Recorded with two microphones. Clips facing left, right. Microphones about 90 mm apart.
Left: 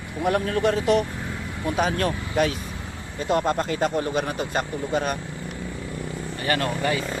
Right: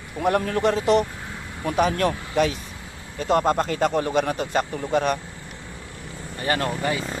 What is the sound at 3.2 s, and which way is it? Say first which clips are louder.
Speech: right 2 dB; 45° right (ahead or behind).